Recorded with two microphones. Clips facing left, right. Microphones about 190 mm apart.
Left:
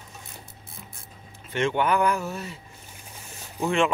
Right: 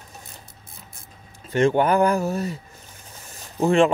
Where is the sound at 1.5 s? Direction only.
40° right (ahead or behind).